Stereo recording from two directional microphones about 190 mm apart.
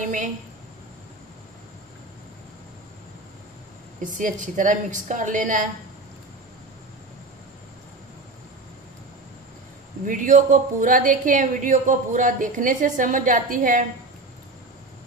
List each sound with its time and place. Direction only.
4.0 s speech: 40° right (ahead or behind)
10.0 s speech: 45° right (ahead or behind)